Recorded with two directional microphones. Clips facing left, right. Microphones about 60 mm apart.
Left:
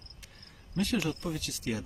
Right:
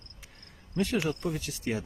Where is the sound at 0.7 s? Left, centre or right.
Right.